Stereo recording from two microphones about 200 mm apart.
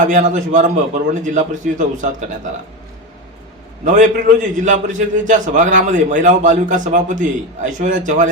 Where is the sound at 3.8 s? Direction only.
40° right (ahead or behind).